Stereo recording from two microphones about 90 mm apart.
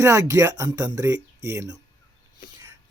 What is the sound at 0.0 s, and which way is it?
Speech, 30° right (ahead or behind).